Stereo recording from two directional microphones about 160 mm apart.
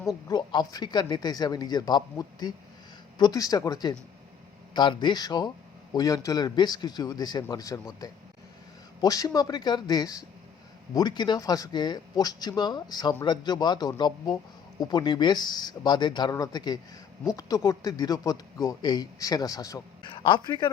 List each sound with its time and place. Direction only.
0.3 s speech: 25° left (ahead or behind)
20.1 s speech: 30° left (ahead or behind)